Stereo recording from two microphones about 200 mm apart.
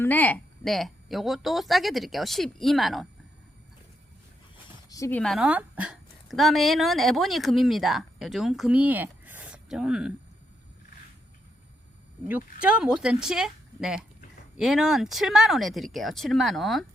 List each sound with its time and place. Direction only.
0.0 s speech: 10° left (ahead or behind)
4.9 s a woman's voice: 15° left (ahead or behind)
5.2 s a woman's voice: centre (ahead or behind)
12.6 s speech: 5° right (ahead or behind)